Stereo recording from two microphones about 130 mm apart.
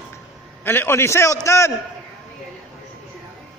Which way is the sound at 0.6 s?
15° left (ahead or behind).